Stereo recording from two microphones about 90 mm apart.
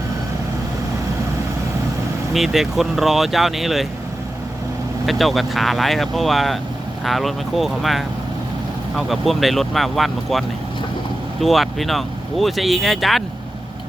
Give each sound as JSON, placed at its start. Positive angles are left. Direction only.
{"t": 2.3, "sound": "speech", "side_deg": -5}
{"t": 5.0, "sound": "speech", "side_deg": 0}